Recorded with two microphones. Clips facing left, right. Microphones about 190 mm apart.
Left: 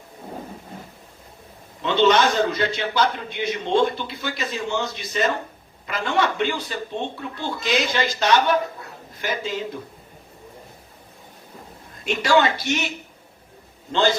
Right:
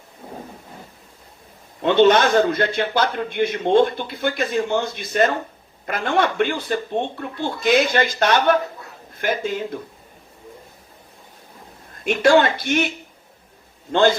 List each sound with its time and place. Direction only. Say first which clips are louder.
1.8 s a man's voice: right 3 dB; 55° right (ahead or behind)
12.0 s a man's voice: right 4 dB; 55° right (ahead or behind)
13.9 s a man's voice: right 4 dB; 55° right (ahead or behind)